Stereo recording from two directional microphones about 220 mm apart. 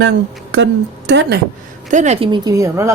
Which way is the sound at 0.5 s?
55° right (ahead or behind).